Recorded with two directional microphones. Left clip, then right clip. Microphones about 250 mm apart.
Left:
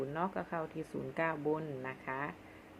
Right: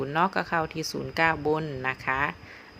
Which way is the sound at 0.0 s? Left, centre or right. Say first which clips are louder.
Right 12 dB; right.